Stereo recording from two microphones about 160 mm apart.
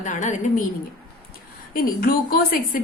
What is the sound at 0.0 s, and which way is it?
Speech, 50° left (ahead or behind).